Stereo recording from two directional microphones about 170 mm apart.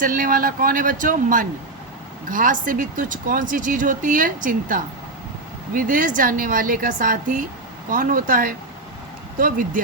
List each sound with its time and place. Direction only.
0.0 s speech: 50° right (ahead or behind)